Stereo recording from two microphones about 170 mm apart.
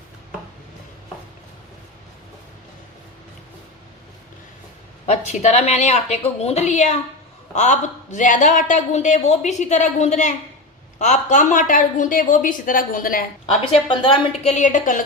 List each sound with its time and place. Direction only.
5.0 s a woman's voice: 40° left (ahead or behind)
13.8 s a woman's voice: 30° left (ahead or behind)
14.5 s a woman's voice: 45° left (ahead or behind)